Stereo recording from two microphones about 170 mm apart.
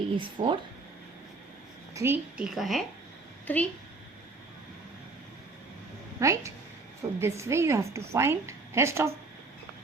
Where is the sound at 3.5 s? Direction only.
10° left (ahead or behind).